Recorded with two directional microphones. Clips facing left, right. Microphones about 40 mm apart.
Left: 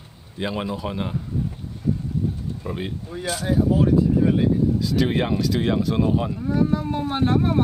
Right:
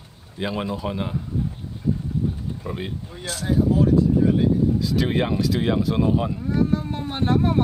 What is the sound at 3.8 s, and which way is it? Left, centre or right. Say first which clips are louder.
Speech: right 1 dB; centre.